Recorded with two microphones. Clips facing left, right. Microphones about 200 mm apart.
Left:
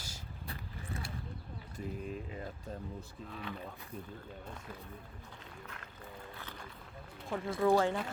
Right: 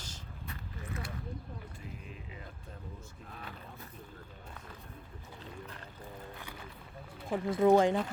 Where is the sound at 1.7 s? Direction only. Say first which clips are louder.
Left 7 dB; 40° left (ahead or behind).